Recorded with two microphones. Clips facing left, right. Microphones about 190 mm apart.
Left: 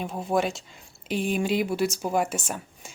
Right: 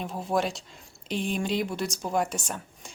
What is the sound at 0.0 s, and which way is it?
Speech, centre (ahead or behind).